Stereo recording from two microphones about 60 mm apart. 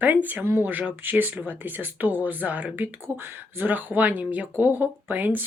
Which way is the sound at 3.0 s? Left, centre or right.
Right.